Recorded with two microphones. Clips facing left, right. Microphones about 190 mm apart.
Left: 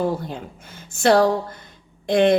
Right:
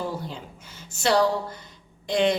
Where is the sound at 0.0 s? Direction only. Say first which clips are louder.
Left 7 dB; 55° left (ahead or behind).